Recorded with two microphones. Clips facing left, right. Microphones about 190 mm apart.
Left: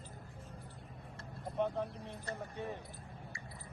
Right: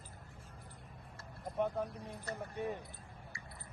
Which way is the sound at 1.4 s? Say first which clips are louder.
Even; centre (ahead or behind).